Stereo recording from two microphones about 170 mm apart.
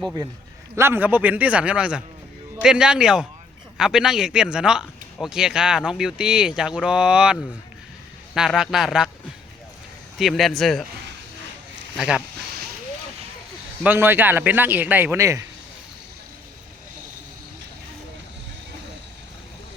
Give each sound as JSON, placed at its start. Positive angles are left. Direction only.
{"t": 0.8, "sound": "a man's voice", "side_deg": -15}
{"t": 8.4, "sound": "speech", "side_deg": -5}
{"t": 10.2, "sound": "speech", "side_deg": 0}
{"t": 11.9, "sound": "speech", "side_deg": -5}
{"t": 13.8, "sound": "a man's voice", "side_deg": -10}